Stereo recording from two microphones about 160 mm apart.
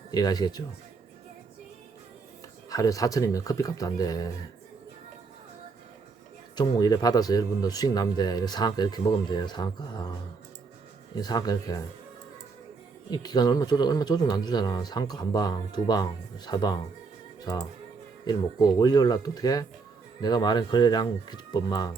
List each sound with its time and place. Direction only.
0.1 s speech: 25° left (ahead or behind)
2.6 s speech: 20° left (ahead or behind)
6.6 s speech: 25° left (ahead or behind)
13.1 s speech: 25° left (ahead or behind)